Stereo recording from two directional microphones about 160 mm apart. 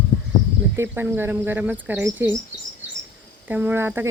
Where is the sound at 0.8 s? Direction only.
15° right (ahead or behind).